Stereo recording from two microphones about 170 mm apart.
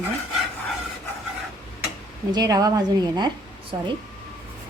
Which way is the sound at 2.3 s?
20° right (ahead or behind).